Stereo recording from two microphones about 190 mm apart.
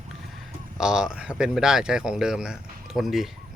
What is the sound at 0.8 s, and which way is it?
Speech, 5° right (ahead or behind).